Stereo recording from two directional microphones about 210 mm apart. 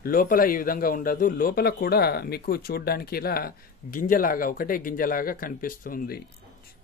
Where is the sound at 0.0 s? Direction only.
45° left (ahead or behind).